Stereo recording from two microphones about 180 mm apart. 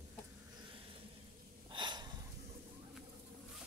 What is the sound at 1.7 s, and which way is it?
Gasp, 25° right (ahead or behind).